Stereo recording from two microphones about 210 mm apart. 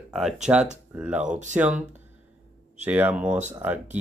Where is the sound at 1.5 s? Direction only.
5° right (ahead or behind).